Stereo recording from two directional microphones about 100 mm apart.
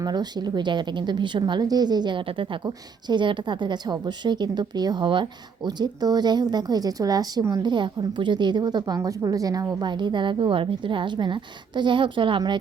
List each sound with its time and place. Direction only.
0.0 s a woman's voice: 45° right (ahead or behind)
7.6 s a woman's voice: 50° right (ahead or behind)